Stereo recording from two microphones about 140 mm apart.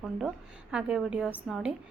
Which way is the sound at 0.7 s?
5° right (ahead or behind).